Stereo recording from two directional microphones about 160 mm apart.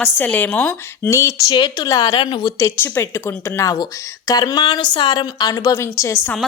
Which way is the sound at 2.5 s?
15° left (ahead or behind).